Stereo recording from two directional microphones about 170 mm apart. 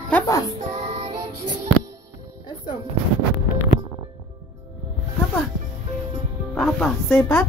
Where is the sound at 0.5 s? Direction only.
40° right (ahead or behind).